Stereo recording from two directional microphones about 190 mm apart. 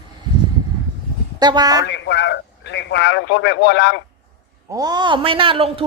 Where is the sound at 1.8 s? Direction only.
65° left (ahead or behind).